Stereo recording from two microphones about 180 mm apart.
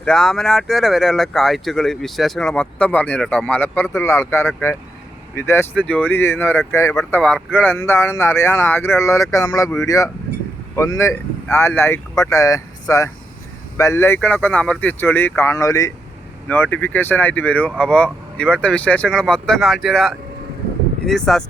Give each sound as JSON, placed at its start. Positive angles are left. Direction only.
{"t": 0.0, "sound": "speech", "side_deg": 5}
{"t": 6.9, "sound": "speech", "side_deg": 5}